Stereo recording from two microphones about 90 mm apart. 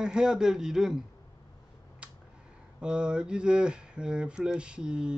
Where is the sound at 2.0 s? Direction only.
10° right (ahead or behind).